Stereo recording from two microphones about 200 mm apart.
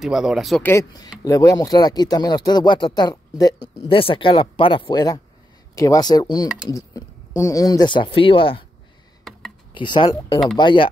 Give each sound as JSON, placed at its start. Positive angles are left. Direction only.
{"t": 0.0, "sound": "speech", "side_deg": 0}
{"t": 0.7, "sound": "speech", "side_deg": 15}
{"t": 9.8, "sound": "speech", "side_deg": 25}